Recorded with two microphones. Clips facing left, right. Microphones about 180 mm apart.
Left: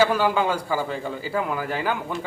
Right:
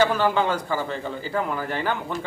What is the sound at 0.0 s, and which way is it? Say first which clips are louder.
A man's voice: even; 10° left (ahead or behind).